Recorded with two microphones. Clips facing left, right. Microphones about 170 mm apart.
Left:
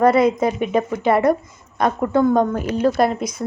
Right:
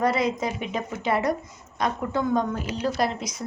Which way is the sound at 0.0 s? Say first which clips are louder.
Left 9 dB; 55° left (ahead or behind).